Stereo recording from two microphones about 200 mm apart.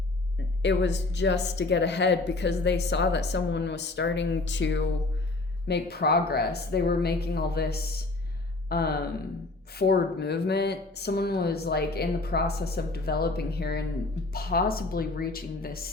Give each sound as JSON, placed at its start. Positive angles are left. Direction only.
{"t": 0.6, "sound": "speech", "side_deg": 60}